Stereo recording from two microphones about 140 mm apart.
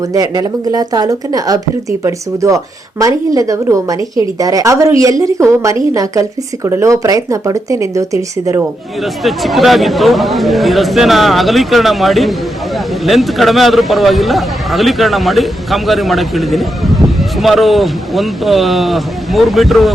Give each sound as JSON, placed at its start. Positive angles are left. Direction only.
{"t": 0.1, "sound": "speech", "side_deg": -25}
{"t": 9.2, "sound": "a man's voice", "side_deg": 0}